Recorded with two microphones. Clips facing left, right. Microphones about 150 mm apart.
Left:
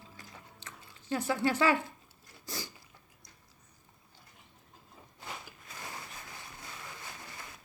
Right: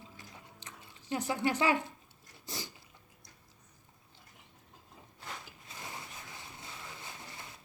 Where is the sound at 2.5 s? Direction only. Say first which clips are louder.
Left 1 dB; 20° right (ahead or behind).